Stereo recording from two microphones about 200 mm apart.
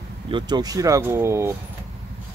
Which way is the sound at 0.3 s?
25° right (ahead or behind).